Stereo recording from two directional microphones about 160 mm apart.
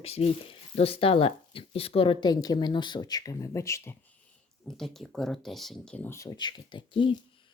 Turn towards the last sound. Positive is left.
turn(degrees=30)  # may be behind; listen again after turning